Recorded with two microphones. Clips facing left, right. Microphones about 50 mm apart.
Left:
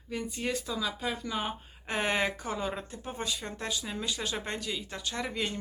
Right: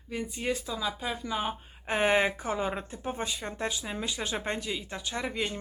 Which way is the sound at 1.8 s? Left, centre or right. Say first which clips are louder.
Right 4 dB; right.